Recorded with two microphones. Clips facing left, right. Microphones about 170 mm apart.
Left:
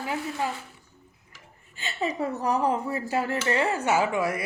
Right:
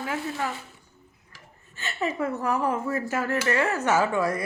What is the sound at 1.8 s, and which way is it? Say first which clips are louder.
Speech: right 1 dB; 20° left (ahead or behind).